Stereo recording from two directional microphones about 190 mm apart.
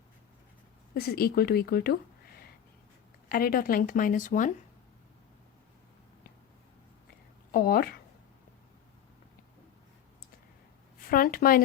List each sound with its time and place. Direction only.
0.9 s speech: 55° left (ahead or behind)
3.2 s speech: 50° left (ahead or behind)
7.5 s speech: 50° left (ahead or behind)
11.1 s speech: 50° left (ahead or behind)